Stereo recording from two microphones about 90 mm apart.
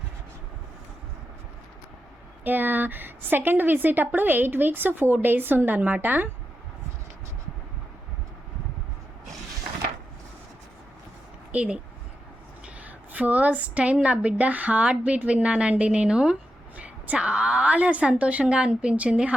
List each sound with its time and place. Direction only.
2.4 s a woman's voice: 20° right (ahead or behind)
11.5 s a woman's voice: 15° right (ahead or behind)